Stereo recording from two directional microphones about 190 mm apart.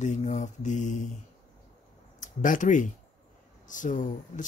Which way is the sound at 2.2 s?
45° left (ahead or behind).